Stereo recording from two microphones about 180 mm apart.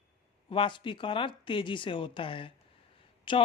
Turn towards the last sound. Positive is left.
turn(degrees=25)  # may be behind; listen again after turning